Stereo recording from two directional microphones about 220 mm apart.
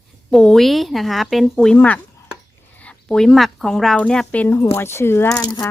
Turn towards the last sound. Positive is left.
turn(degrees=15)  # may be behind; listen again after turning